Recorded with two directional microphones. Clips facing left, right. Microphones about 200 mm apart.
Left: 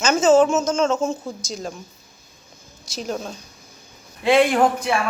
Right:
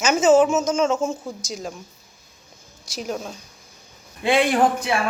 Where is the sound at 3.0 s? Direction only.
5° right (ahead or behind).